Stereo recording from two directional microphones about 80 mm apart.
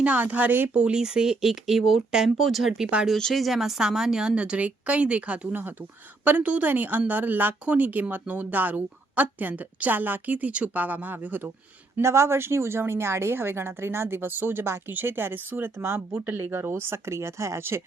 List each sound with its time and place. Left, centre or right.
0.0 s speech: centre
0.7 s a woman's voice: centre
11.9 s a woman's voice: right